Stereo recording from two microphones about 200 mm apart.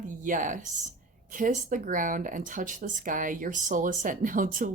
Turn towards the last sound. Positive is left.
turn(degrees=-45)  # may be behind; listen again after turning